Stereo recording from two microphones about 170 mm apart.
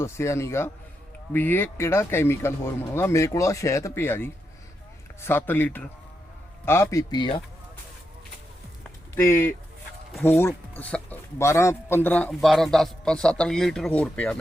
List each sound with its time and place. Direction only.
0.0 s speech: 15° left (ahead or behind)
7.1 s speech: 30° left (ahead or behind)
9.3 s a man's voice: 15° left (ahead or behind)